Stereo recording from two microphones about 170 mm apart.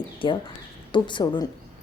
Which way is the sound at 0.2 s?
30° left (ahead or behind).